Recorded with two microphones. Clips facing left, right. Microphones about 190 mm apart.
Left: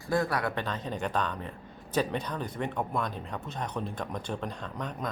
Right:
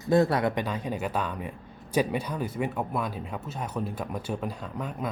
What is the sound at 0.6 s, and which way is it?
Speech, 10° right (ahead or behind).